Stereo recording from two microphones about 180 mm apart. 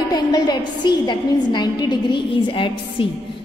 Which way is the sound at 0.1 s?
25° left (ahead or behind).